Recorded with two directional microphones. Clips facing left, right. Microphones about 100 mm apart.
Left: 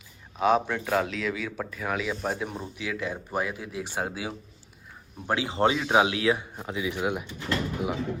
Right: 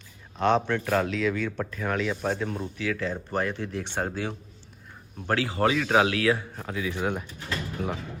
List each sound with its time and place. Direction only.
0.3 s speech: 5° left (ahead or behind)
5.2 s speech: 15° left (ahead or behind)